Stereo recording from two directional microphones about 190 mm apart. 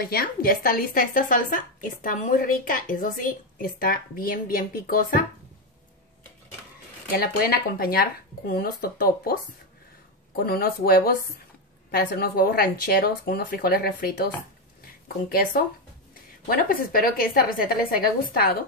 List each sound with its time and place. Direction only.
0.0 s speech: 55° left (ahead or behind)
7.1 s speech: 50° left (ahead or behind)
10.4 s speech: 55° left (ahead or behind)